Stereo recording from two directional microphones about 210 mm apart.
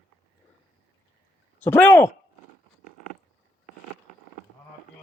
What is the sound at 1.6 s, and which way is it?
Speech, 10° left (ahead or behind).